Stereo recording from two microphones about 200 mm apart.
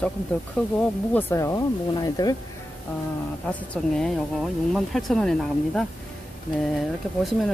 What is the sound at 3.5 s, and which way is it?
Speech, 5° left (ahead or behind).